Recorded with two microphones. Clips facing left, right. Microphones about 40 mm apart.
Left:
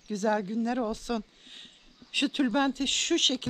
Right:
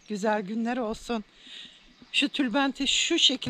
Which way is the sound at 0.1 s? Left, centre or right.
Right.